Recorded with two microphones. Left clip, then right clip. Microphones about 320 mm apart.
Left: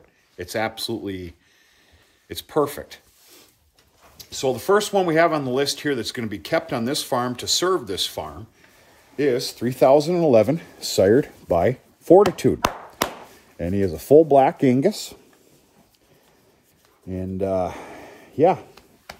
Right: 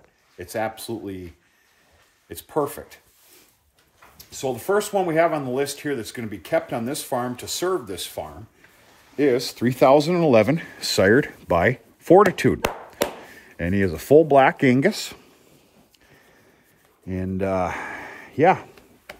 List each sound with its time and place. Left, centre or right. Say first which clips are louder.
0.4 s speech: left 2 dB; centre
4.2 s speech: left 4 dB; centre
9.1 s speech: right 1 dB; centre
13.0 s a sound: even; centre
13.6 s speech: even; right
17.4 s speech: even; right
17.9 s a sound: right 4 dB; right